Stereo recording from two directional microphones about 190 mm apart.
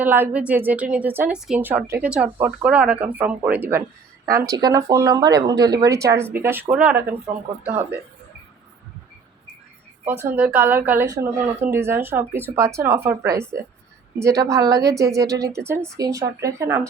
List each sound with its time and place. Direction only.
0.0 s speech: 10° right (ahead or behind)
10.1 s speech: 10° right (ahead or behind)